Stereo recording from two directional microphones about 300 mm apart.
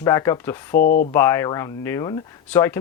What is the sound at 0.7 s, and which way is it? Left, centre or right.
Speech, left.